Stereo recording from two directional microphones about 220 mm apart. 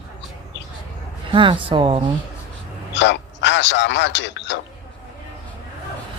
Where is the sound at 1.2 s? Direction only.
20° right (ahead or behind).